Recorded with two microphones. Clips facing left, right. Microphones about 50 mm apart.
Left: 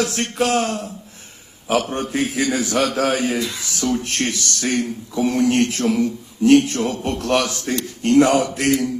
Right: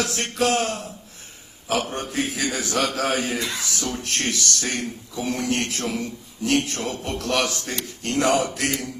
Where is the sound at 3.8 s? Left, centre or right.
Left.